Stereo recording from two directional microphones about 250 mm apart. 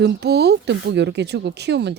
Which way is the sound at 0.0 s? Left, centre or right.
Right.